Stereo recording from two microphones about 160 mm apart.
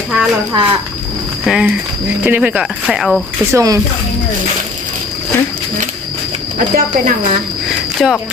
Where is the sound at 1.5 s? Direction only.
5° right (ahead or behind).